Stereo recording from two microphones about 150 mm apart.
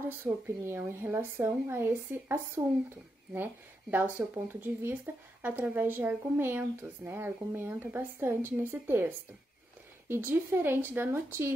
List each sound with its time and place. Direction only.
0.1 s speech: 15° right (ahead or behind)
3.9 s speech: 10° right (ahead or behind)